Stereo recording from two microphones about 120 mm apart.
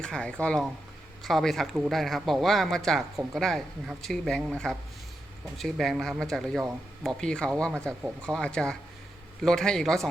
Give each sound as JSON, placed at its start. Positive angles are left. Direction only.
{"t": 0.0, "sound": "speech", "side_deg": 5}